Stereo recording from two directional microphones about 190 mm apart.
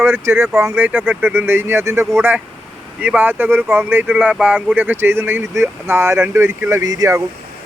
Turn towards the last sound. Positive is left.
turn(degrees=-15)  # may be behind; listen again after turning